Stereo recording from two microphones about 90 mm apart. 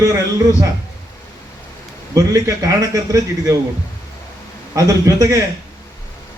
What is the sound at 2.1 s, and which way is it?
A man's voice, 40° right (ahead or behind).